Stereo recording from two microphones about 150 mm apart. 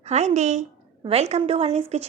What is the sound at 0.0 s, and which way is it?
A woman's voice, 50° right (ahead or behind).